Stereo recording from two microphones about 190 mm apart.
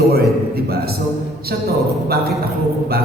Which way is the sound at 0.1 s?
55° right (ahead or behind).